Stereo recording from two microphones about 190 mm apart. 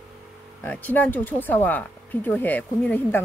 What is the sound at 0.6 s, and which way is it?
Speech, 10° left (ahead or behind).